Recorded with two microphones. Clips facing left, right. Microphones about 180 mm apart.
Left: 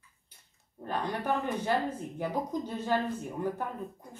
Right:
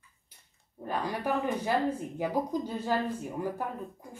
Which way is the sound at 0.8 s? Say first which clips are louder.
Even; 5° right (ahead or behind).